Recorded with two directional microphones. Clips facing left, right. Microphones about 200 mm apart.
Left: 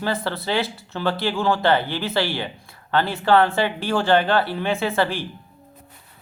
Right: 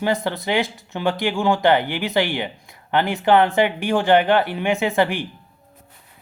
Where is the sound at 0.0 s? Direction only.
15° right (ahead or behind).